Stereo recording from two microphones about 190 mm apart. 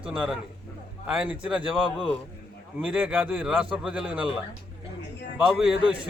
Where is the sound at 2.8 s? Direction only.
5° right (ahead or behind).